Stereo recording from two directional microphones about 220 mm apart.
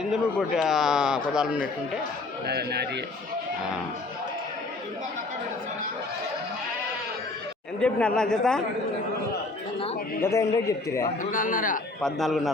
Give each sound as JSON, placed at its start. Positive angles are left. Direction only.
{"t": 0.0, "sound": "a man's voice", "side_deg": 0}
{"t": 2.5, "sound": "speech", "side_deg": -45}
{"t": 7.8, "sound": "a man's voice", "side_deg": 5}
{"t": 10.2, "sound": "a man's voice", "side_deg": 15}
{"t": 11.2, "sound": "speech", "side_deg": 35}
{"t": 12.0, "sound": "a man's voice", "side_deg": 0}